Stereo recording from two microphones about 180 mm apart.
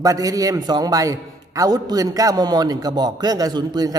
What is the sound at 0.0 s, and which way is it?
A man's voice, 20° right (ahead or behind).